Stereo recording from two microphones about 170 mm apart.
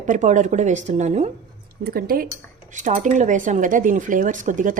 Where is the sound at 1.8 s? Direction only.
60° right (ahead or behind).